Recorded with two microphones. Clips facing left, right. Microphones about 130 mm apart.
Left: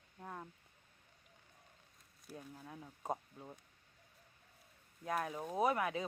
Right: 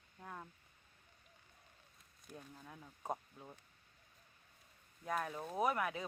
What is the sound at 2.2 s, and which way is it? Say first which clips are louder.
Speech: left 3 dB; 10° left (ahead or behind).